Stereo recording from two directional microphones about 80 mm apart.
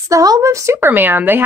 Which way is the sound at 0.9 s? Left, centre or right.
Right.